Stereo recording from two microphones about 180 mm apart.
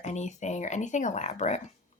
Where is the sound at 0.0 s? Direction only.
40° left (ahead or behind).